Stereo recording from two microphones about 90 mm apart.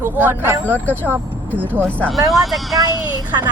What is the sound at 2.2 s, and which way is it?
Speech, centre (ahead or behind).